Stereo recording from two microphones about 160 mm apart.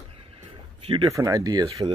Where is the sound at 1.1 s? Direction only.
20° right (ahead or behind).